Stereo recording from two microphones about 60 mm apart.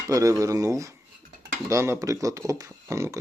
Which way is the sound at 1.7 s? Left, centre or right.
Right.